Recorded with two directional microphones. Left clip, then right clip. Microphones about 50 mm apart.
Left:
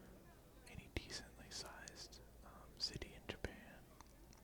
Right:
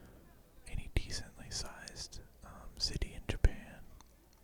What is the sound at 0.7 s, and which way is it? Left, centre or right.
Whispering, right.